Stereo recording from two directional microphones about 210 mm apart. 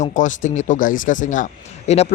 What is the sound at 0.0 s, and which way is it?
Speech, 35° left (ahead or behind).